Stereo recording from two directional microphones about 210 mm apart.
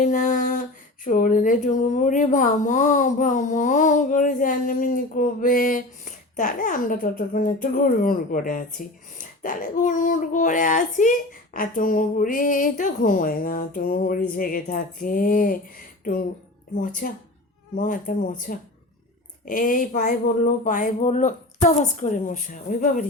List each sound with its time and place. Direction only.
0.0 s speech: 35° left (ahead or behind)
16.7 s speech: 40° left (ahead or behind)